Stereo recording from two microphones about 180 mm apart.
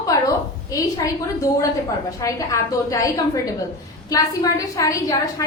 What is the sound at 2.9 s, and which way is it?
A woman's voice, 20° left (ahead or behind).